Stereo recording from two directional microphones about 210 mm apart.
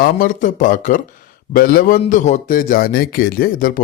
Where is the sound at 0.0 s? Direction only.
40° left (ahead or behind).